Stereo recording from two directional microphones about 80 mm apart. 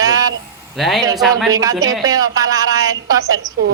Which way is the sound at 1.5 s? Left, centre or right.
Right.